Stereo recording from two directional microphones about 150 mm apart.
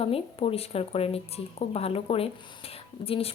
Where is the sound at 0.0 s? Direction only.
40° left (ahead or behind).